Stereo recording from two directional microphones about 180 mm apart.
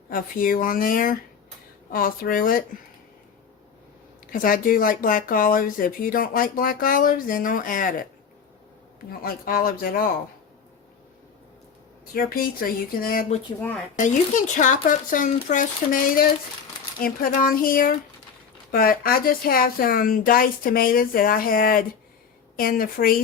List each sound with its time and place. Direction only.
0.1 s speech: 50° left (ahead or behind)
4.3 s speech: 50° left (ahead or behind)
9.2 s speech: 55° left (ahead or behind)
12.1 s speech: 55° left (ahead or behind)
13.6 s speech: 10° left (ahead or behind)
14.5 s speech: 45° left (ahead or behind)